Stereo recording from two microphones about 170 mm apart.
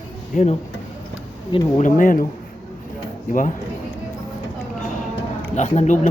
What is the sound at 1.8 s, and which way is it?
Speech, 55° left (ahead or behind).